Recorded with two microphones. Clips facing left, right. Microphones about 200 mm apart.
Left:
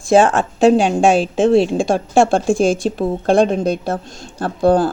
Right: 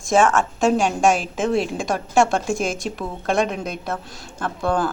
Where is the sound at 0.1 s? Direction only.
35° left (ahead or behind).